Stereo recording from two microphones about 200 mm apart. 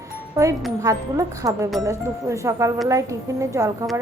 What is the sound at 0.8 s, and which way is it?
Speech, 15° right (ahead or behind).